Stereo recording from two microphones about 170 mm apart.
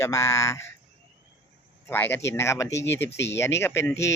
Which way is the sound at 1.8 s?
10° left (ahead or behind).